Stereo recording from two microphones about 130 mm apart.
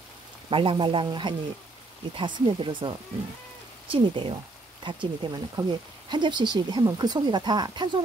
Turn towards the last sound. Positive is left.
turn(degrees=-35)  # may be behind; listen again after turning